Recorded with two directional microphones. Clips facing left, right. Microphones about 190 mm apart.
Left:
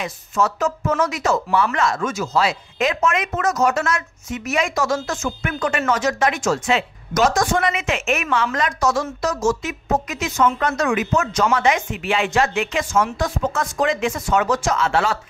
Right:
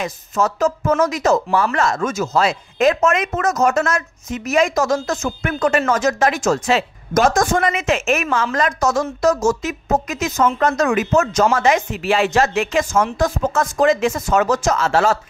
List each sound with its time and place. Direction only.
0.0 s speech: 40° right (ahead or behind)